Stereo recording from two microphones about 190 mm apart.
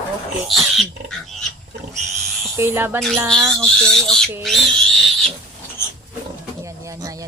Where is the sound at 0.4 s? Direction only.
Centre (ahead or behind).